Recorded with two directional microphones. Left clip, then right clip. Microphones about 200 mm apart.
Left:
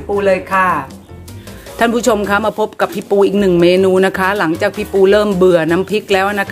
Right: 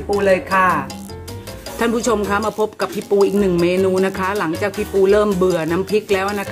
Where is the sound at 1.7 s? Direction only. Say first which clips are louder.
Left 5 dB; 30° left (ahead or behind).